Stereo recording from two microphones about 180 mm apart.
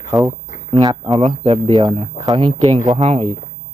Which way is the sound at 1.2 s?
35° right (ahead or behind).